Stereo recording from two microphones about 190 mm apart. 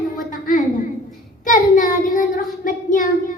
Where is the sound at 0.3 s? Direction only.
45° left (ahead or behind).